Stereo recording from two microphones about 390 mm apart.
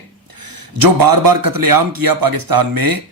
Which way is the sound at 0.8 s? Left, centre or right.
Right.